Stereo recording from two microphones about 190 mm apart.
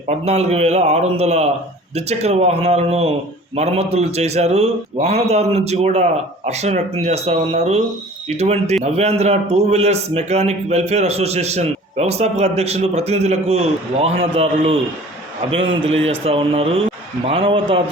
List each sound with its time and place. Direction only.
0.1 s a man's voice: 35° right (ahead or behind)